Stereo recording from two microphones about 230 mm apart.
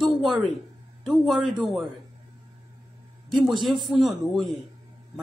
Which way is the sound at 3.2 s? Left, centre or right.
Centre.